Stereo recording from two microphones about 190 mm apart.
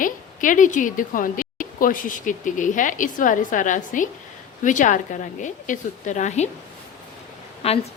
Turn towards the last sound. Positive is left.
turn(degrees=30)  # may be behind; listen again after turning